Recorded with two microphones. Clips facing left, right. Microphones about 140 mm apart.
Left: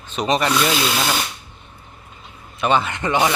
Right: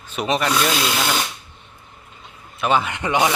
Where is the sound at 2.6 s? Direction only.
5° right (ahead or behind).